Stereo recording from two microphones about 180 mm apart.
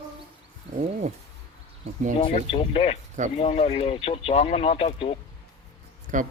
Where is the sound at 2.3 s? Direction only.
30° left (ahead or behind).